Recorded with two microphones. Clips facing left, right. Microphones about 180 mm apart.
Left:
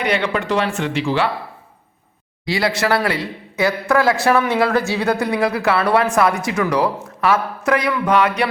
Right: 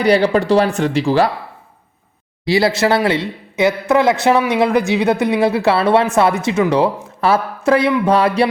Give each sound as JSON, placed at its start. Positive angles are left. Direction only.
{"t": 0.0, "sound": "speech", "side_deg": -35}
{"t": 2.5, "sound": "a man's voice", "side_deg": -25}